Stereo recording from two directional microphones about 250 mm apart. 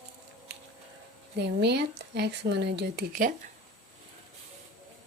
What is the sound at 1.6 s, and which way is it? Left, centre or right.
Speech, right.